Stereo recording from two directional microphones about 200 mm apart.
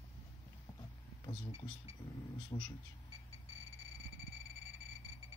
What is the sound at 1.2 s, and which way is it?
Speech, 20° left (ahead or behind).